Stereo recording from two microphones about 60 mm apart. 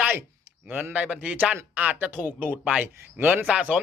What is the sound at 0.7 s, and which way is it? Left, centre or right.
Speech, right.